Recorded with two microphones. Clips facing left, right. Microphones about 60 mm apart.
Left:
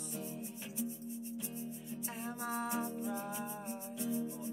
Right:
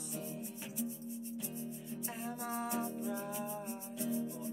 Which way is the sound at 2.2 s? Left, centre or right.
Centre.